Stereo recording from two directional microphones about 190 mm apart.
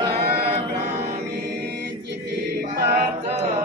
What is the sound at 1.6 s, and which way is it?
Music, 60° right (ahead or behind).